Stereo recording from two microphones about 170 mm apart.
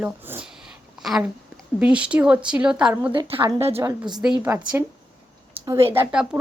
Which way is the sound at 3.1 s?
30° right (ahead or behind).